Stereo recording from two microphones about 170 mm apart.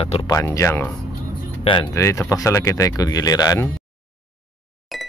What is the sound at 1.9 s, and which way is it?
Speech, 15° left (ahead or behind).